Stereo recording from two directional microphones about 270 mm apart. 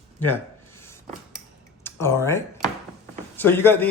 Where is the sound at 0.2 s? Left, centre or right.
Centre.